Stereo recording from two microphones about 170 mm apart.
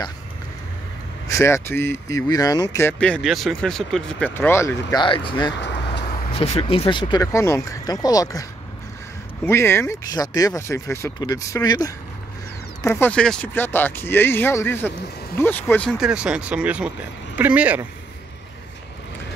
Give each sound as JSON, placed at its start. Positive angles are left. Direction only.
{"t": 1.2, "sound": "speech", "side_deg": 15}
{"t": 5.0, "sound": "speech", "side_deg": 30}
{"t": 5.5, "sound": "vehicle", "side_deg": 90}
{"t": 6.3, "sound": "speech", "side_deg": 35}
{"t": 9.5, "sound": "speech", "side_deg": 15}